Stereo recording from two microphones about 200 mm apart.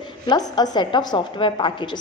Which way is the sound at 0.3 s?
20° left (ahead or behind).